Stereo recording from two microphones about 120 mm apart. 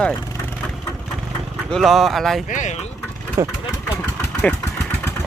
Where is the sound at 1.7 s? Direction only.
Centre (ahead or behind).